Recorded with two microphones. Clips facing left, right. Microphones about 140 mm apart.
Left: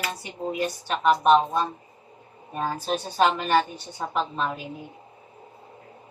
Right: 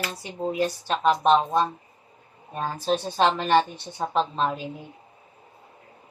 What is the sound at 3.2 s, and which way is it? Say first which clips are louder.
Speech: even; 25° right (ahead or behind).